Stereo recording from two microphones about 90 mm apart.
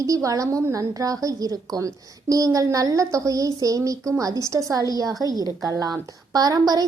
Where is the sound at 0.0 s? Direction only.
35° right (ahead or behind).